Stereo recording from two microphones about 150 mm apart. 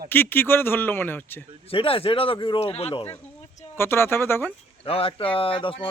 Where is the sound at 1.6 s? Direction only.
40° left (ahead or behind).